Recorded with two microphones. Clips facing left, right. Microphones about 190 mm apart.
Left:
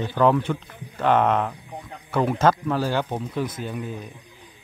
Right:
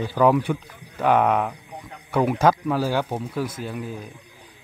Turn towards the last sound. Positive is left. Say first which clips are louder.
# even
turn(degrees=-5)  # may be behind; listen again after turning